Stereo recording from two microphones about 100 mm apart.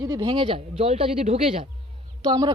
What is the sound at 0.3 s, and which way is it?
Speech, 60° right (ahead or behind).